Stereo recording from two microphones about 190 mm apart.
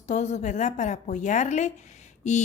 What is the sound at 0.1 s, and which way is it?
Speech, 35° left (ahead or behind).